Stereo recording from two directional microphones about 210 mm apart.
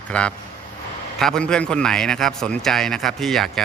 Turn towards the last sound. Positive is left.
turn(degrees=0)  # may be behind; listen again after turning